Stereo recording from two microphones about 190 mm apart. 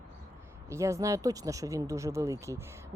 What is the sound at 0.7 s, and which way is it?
Speech, 15° right (ahead or behind).